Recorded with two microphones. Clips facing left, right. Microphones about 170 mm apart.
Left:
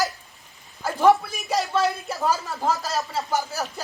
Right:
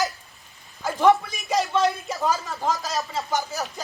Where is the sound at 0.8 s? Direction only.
5° left (ahead or behind).